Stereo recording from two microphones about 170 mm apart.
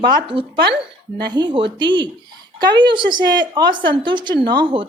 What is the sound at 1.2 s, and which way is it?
Speech, 25° right (ahead or behind).